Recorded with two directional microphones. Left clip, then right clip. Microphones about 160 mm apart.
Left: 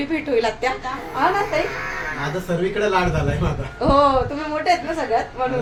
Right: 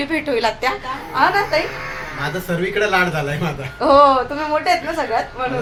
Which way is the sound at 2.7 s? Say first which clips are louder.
Right 4 dB; 25° left (ahead or behind).